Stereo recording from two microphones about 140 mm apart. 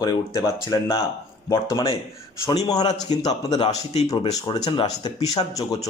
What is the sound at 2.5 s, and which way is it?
Speech, 25° left (ahead or behind).